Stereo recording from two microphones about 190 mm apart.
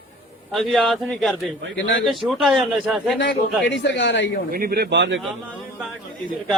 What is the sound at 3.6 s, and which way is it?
Speech, 70° left (ahead or behind).